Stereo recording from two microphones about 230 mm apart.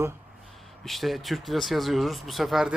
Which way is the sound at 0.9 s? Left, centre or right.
Centre.